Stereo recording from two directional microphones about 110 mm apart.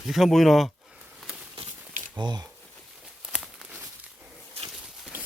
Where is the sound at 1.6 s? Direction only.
55° right (ahead or behind).